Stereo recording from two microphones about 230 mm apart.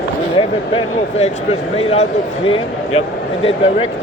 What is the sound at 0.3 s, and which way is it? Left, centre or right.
A man's voice, left.